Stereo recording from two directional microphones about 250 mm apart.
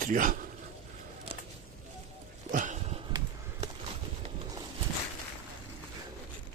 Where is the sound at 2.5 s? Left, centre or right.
Right.